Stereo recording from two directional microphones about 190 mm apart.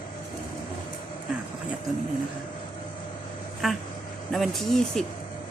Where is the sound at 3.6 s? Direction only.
Centre (ahead or behind).